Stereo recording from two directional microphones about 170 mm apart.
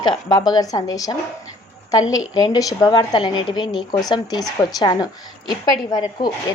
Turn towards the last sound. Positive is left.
turn(degrees=25)  # may be behind; listen again after turning